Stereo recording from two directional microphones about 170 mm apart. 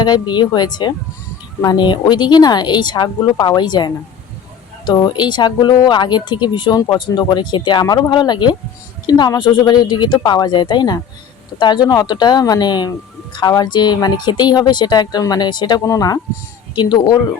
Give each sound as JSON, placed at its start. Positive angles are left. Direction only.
{"t": 0.0, "sound": "speech", "side_deg": 25}